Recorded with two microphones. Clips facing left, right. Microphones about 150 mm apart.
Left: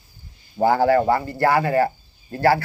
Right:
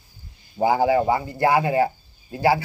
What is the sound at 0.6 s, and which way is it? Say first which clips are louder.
Speech: left 2 dB; 15° right (ahead or behind).